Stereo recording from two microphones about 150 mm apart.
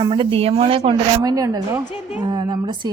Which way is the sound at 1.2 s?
25° right (ahead or behind).